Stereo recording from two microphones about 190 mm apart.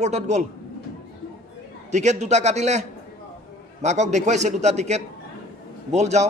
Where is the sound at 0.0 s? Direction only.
35° right (ahead or behind).